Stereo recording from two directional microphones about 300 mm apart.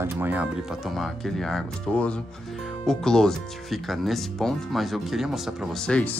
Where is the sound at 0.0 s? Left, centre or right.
Centre.